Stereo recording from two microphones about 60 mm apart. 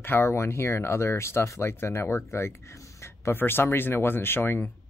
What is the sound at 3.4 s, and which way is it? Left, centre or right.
Speech, left.